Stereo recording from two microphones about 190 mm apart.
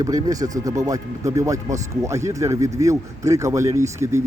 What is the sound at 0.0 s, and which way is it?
Speech, 20° right (ahead or behind).